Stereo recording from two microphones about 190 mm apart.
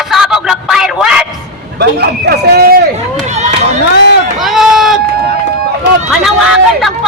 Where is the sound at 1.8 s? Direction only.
60° right (ahead or behind).